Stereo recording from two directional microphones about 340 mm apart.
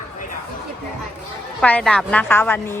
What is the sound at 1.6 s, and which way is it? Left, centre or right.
A woman's voice, centre.